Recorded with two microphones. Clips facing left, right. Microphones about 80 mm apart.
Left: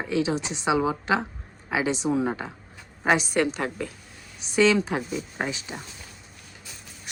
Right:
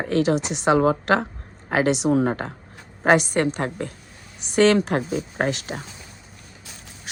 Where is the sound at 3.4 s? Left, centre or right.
Right.